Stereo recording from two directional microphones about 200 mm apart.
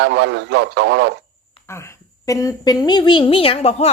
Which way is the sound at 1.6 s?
15° left (ahead or behind).